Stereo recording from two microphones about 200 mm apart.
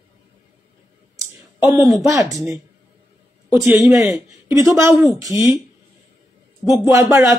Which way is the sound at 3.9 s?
15° right (ahead or behind).